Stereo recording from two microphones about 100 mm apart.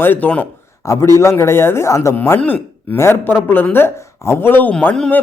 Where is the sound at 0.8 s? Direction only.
30° left (ahead or behind).